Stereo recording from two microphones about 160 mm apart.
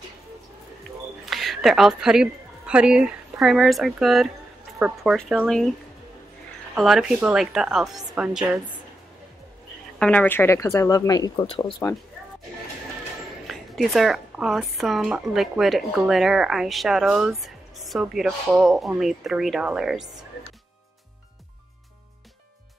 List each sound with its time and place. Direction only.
1.3 s a woman's voice: centre (ahead or behind)
6.7 s speech: centre (ahead or behind)
9.9 s speech: 5° left (ahead or behind); by 11.7 s 35° left (ahead or behind)
13.5 s speech: centre (ahead or behind)